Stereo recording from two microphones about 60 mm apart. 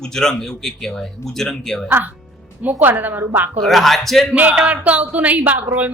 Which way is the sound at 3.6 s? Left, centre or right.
Centre.